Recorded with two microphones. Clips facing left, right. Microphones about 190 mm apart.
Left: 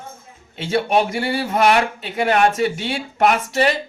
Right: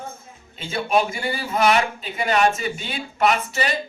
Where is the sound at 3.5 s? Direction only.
65° left (ahead or behind).